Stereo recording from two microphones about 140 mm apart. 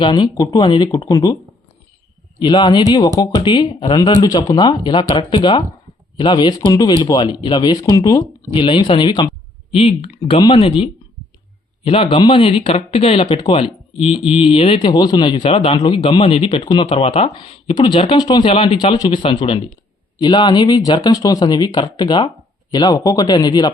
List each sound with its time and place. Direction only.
0.0 s speech: 35° left (ahead or behind)
2.4 s speech: 35° left (ahead or behind)
8.5 s speech: 35° left (ahead or behind)
15.4 s speech: 45° left (ahead or behind)
15.8 s speech: 35° left (ahead or behind)